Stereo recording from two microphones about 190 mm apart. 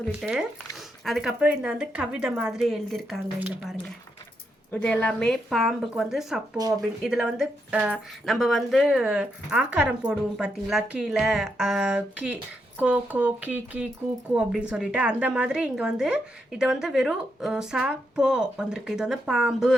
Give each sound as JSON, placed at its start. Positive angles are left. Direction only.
{"t": 0.2, "sound": "a woman's voice", "side_deg": -5}
{"t": 4.7, "sound": "a woman's voice", "side_deg": 5}